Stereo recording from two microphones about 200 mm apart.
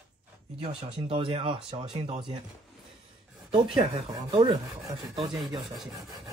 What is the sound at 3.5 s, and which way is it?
Rub, 20° right (ahead or behind).